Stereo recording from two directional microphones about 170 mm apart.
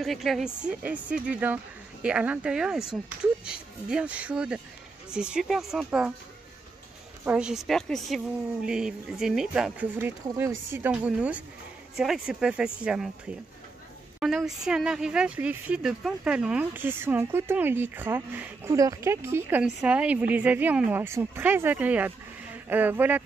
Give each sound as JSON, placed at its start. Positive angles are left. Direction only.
{"t": 0.0, "sound": "speech", "side_deg": 0}
{"t": 7.2, "sound": "speech", "side_deg": -5}
{"t": 14.2, "sound": "speech", "side_deg": 0}